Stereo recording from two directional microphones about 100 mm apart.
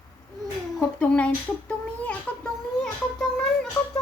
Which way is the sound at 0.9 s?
15° left (ahead or behind).